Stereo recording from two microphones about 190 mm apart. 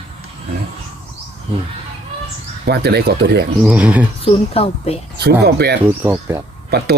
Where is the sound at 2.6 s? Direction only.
60° right (ahead or behind).